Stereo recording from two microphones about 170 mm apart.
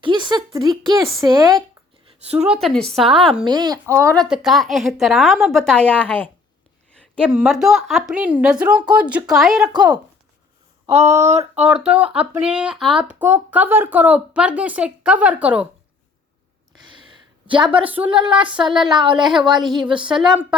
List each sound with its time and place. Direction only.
0.0 s a sound: 30° right (ahead or behind)
0.9 s a woman's voice: 20° right (ahead or behind)
2.3 s speech: 10° right (ahead or behind)
2.6 s speech: centre (ahead or behind)
3.4 s a woman's voice: 25° right (ahead or behind)
4.1 s speech: centre (ahead or behind)
7.3 s speech: centre (ahead or behind)
9.6 s a woman's voice: 25° right (ahead or behind)
11.0 s speech: 15° right (ahead or behind)
11.3 s speech: 40° right (ahead or behind)
11.6 s speech: 5° right (ahead or behind)
16.8 s a sound: 30° right (ahead or behind)
17.5 s a woman's voice: 30° right (ahead or behind)
20.3 s speech: 5° right (ahead or behind)